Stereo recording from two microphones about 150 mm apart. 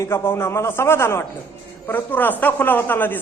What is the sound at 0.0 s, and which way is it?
A man's voice, 15° left (ahead or behind).